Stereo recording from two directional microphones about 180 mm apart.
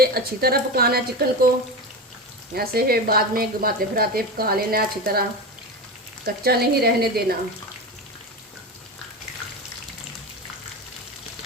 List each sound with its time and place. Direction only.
0.0 s speech: 60° right (ahead or behind)
2.6 s speech: 60° right (ahead or behind)
6.2 s speech: 60° right (ahead or behind)